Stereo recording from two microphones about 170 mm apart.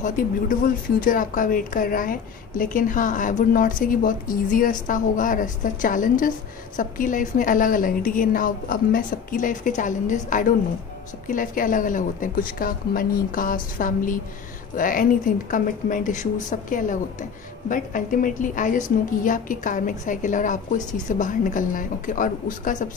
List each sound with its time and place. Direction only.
0.0 s a woman's voice: 50° left (ahead or behind)